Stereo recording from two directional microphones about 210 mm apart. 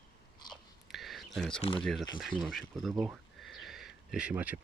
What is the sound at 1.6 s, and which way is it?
Speech, 25° left (ahead or behind).